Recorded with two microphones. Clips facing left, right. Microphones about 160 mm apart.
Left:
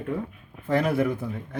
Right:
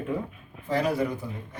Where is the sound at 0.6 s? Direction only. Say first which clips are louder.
Left 2 dB; 55° left (ahead or behind).